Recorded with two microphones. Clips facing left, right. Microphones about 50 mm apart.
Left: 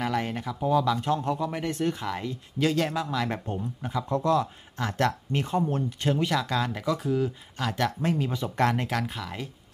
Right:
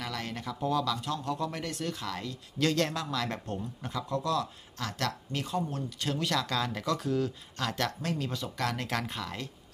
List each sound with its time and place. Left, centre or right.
0.0 s a sound: left
0.4 s speech: centre
4.1 s speech: left
8.8 s speech: centre